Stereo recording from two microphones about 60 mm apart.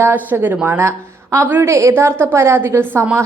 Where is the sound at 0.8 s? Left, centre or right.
Right.